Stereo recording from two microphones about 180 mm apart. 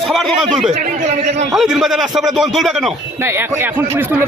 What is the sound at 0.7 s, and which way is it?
Speech, 40° right (ahead or behind).